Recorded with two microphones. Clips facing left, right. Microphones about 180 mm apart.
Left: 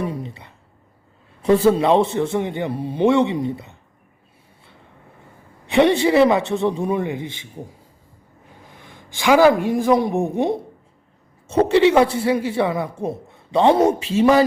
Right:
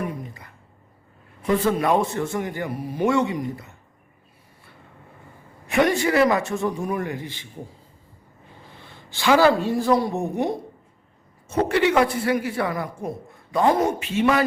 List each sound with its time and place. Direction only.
0.0 s a sound: 30° left (ahead or behind)
1.4 s a man's voice: 30° left (ahead or behind)
5.7 s a man's voice: 25° left (ahead or behind)
8.7 s a man's voice: 15° left (ahead or behind); by 14.4 s 30° left (ahead or behind)